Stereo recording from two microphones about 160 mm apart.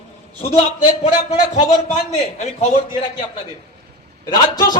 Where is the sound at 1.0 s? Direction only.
40° left (ahead or behind).